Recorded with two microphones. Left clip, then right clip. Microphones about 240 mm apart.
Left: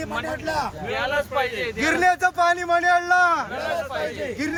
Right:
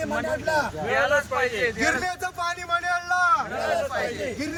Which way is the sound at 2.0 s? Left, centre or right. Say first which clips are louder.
Left 9 dB; left.